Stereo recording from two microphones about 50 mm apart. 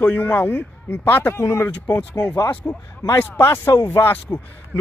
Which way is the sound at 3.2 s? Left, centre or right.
Left.